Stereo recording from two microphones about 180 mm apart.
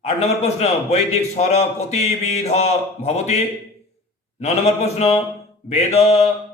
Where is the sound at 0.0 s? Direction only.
35° left (ahead or behind).